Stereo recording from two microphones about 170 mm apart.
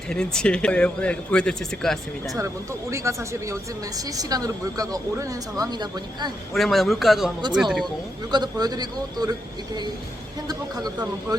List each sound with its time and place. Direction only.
0.1 s speech: 5° left (ahead or behind)
2.9 s a woman's voice: 15° right (ahead or behind)
6.5 s speech: centre (ahead or behind)
8.3 s a woman's voice: 25° right (ahead or behind)
11.3 s a woman's voice: 20° right (ahead or behind)